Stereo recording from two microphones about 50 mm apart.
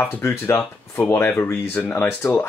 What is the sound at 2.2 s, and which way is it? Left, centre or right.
Speech, left.